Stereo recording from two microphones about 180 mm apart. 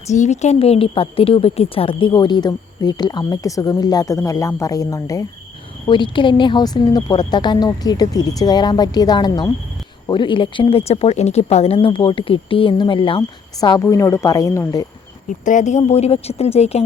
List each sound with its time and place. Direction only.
0.1 s a woman's voice: 40° left (ahead or behind); by 14.8 s 15° left (ahead or behind)
15.4 s a woman's voice: 45° left (ahead or behind)